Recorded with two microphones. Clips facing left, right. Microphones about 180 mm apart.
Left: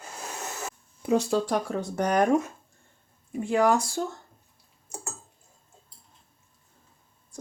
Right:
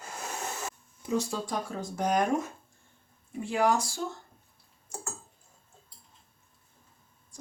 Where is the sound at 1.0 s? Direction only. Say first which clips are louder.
Left 7 dB; 65° left (ahead or behind).